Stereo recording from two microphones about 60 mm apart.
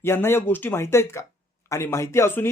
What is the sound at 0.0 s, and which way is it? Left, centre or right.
Speech, left.